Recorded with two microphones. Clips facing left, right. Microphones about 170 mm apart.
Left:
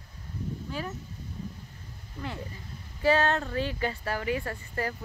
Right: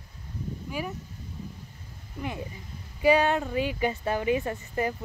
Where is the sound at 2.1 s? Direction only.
15° right (ahead or behind).